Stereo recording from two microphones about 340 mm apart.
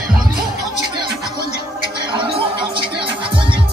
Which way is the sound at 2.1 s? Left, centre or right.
Centre.